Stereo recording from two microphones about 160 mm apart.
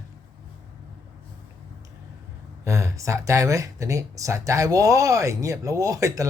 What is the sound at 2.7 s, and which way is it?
Speech, 20° right (ahead or behind).